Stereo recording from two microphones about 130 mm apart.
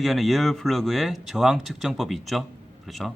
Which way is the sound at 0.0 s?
Centre (ahead or behind).